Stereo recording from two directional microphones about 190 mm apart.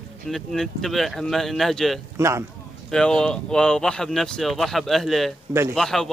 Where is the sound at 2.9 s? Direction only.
5° left (ahead or behind).